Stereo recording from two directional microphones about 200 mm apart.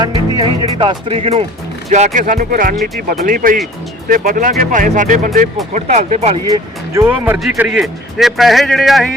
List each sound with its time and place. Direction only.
0.0 s speech: 25° right (ahead or behind)
6.5 s a man's voice: 15° right (ahead or behind)